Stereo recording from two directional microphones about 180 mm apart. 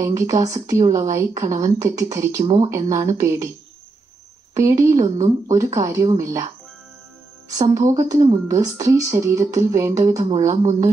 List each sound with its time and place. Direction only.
0.0 s speech: 20° right (ahead or behind)
4.6 s speech: 15° right (ahead or behind)
10.6 s speech: 40° right (ahead or behind)